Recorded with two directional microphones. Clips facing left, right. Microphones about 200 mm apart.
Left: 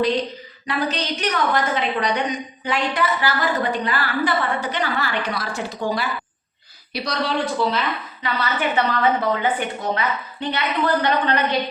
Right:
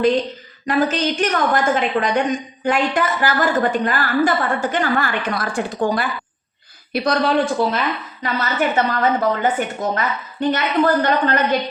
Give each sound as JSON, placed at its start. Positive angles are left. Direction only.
{"t": 0.7, "sound": "a woman's voice", "side_deg": -45}